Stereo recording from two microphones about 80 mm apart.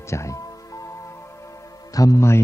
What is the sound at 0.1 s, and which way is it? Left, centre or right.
Music, left.